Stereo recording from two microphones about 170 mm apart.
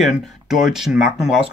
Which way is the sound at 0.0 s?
Centre (ahead or behind).